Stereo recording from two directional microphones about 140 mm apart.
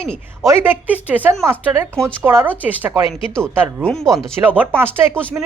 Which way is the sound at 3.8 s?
5° left (ahead or behind).